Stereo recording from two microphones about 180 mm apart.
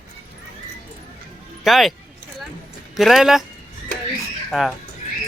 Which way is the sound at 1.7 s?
Centre (ahead or behind).